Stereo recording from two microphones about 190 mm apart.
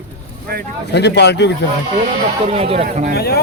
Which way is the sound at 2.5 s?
30° right (ahead or behind).